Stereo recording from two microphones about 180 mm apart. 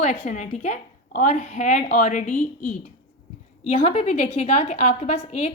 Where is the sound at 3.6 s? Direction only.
35° left (ahead or behind).